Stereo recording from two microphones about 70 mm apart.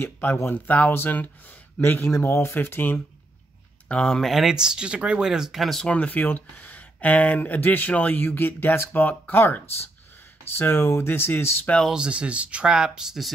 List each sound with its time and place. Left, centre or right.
0.0 s speech: left
2.2 s speech: left
3.9 s speech: centre
4.3 s speech: centre
5.9 s speech: left
10.6 s speech: left
11.9 s speech: centre